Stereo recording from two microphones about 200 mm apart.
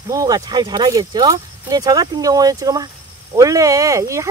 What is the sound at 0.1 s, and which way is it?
Speech, 20° right (ahead or behind).